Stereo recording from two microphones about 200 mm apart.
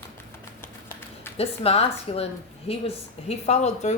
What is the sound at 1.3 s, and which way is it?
Speech, 30° left (ahead or behind).